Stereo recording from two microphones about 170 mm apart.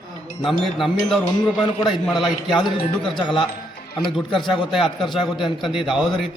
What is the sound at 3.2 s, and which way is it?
Speech, 30° left (ahead or behind).